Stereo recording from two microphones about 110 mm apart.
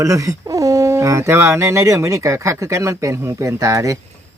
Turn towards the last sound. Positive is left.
turn(degrees=-30)  # may be behind; listen again after turning